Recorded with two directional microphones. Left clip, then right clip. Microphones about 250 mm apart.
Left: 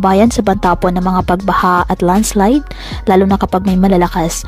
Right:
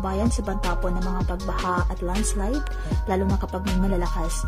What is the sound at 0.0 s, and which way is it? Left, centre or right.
A woman's voice, left.